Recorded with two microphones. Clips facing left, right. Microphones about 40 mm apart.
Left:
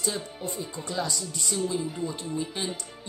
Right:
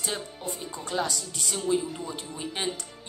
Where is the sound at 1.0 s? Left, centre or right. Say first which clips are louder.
Even; right.